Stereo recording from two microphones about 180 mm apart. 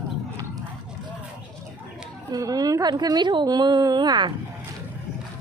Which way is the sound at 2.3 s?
20° right (ahead or behind).